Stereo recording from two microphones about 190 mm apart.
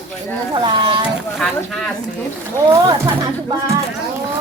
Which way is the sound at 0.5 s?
25° right (ahead or behind).